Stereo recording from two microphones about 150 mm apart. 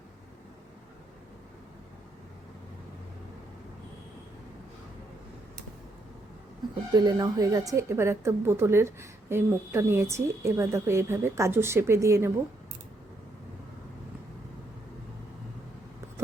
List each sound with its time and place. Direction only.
6.9 s a woman's voice: 25° right (ahead or behind)